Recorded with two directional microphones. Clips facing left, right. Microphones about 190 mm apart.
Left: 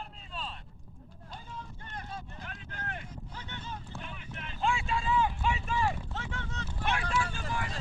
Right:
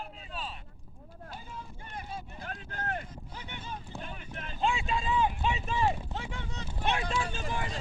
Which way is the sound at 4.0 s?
40° right (ahead or behind).